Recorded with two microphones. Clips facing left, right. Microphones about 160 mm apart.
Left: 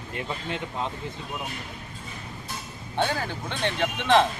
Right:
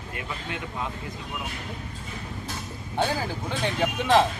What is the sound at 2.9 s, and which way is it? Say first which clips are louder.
Speech: even; 10° right (ahead or behind).